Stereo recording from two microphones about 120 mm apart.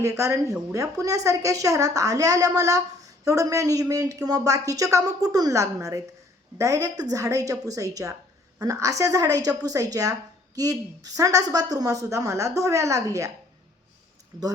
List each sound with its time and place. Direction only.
0.0 s a woman's voice: 25° right (ahead or behind)